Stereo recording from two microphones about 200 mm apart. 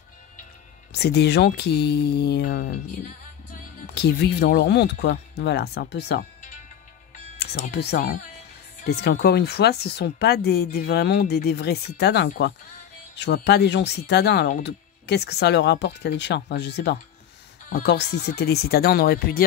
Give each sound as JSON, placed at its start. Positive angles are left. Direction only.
{"t": 0.9, "sound": "speech", "side_deg": 55}
{"t": 7.3, "sound": "speech", "side_deg": 55}